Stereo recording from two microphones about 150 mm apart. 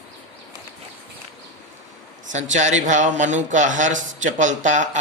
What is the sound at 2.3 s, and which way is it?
Speech, 50° right (ahead or behind).